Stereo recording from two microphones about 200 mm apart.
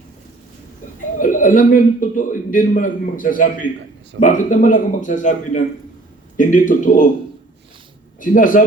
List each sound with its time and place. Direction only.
1.2 s a man's voice: 40° left (ahead or behind)
8.2 s a man's voice: 40° left (ahead or behind)